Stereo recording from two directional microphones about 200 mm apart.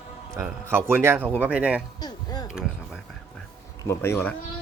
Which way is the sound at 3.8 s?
15° left (ahead or behind).